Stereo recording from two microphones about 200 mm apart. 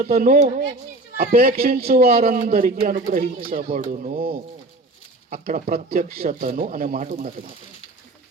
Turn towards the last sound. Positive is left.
turn(degrees=-40)  # may be behind; listen again after turning